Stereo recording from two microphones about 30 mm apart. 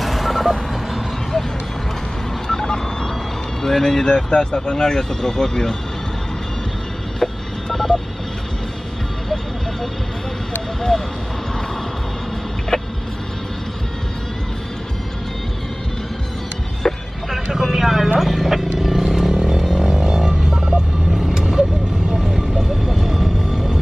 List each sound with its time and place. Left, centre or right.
0.0 s vehicle: centre
2.4 s vehicle: centre
3.6 s speech: centre
4.1 s speech: left
7.2 s vehicle: centre
7.7 s telephone dialing: centre
16.8 s music: centre
17.3 s vehicle: centre
18.2 s wild animals: centre
18.6 s vehicle: centre
19.1 s music: centre
21.3 s vehicle: right
22.2 s vehicle: centre